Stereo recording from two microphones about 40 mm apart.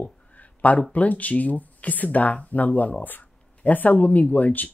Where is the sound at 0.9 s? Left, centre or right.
Left.